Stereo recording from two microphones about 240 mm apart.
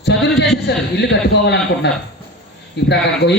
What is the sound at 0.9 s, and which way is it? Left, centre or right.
A man's voice, left.